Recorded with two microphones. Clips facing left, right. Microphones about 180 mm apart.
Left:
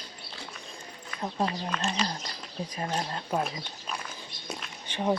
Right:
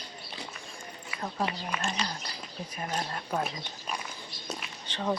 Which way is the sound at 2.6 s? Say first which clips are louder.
Left 2 dB; 30° left (ahead or behind).